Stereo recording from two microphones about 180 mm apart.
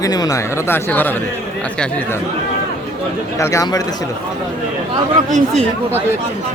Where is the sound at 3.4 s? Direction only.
15° left (ahead or behind).